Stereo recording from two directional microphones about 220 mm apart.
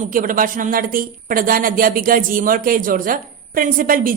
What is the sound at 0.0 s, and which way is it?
Speech, 40° right (ahead or behind).